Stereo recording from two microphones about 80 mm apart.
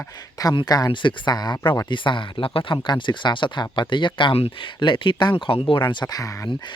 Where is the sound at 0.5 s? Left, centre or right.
Left.